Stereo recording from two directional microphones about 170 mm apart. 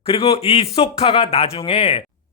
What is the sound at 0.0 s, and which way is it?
Speech, 35° left (ahead or behind).